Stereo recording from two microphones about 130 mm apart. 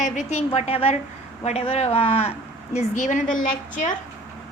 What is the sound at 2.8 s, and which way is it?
Speech, 65° left (ahead or behind).